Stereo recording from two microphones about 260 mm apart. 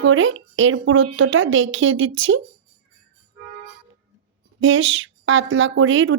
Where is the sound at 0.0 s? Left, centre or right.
Right.